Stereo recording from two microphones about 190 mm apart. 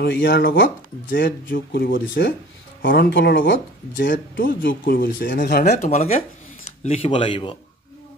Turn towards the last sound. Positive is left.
turn(degrees=25)  # may be behind; listen again after turning